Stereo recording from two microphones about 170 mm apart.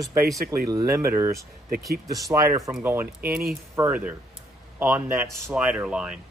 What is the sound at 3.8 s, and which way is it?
Speech, 10° right (ahead or behind).